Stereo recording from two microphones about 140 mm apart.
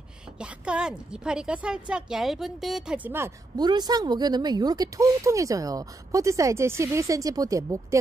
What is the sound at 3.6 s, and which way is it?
Speech, 30° right (ahead or behind).